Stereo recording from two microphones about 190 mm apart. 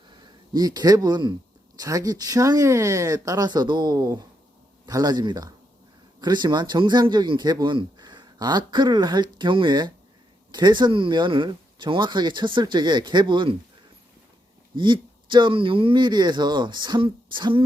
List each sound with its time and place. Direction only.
0.1 s speech: 20° right (ahead or behind)
14.8 s speech: 25° right (ahead or behind)